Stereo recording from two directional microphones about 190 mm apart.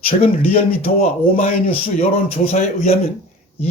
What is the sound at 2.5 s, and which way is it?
Speech, 40° left (ahead or behind).